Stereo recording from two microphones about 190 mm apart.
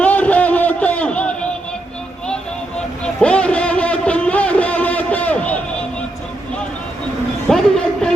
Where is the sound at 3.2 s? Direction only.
5° left (ahead or behind).